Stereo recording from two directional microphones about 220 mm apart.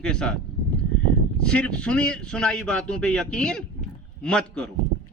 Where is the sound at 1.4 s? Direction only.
5° left (ahead or behind).